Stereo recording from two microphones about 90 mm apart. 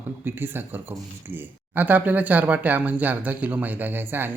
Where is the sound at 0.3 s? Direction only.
25° right (ahead or behind).